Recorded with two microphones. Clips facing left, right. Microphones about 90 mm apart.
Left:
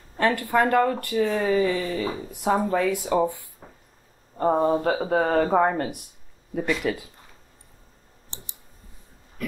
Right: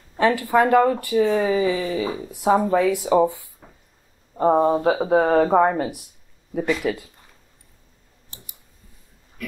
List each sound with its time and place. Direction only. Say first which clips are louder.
0.2 s speech: right 3 dB; 5° right (ahead or behind)
3.6 s a sound: left 2 dB; 10° left (ahead or behind)
4.4 s speech: right 3 dB; 15° right (ahead or behind)
8.3 s clicking: left 3 dB; 30° left (ahead or behind)